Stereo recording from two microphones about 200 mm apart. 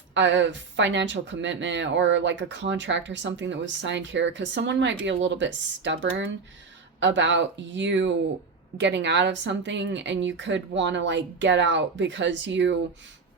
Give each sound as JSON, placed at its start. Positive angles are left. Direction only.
{"t": 0.1, "sound": "speech", "side_deg": -65}